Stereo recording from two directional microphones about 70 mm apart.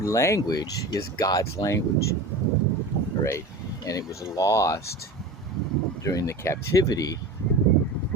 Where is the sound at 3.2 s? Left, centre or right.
Left.